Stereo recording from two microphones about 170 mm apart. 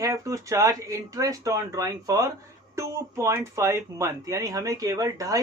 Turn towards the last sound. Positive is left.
turn(degrees=-20)  # may be behind; listen again after turning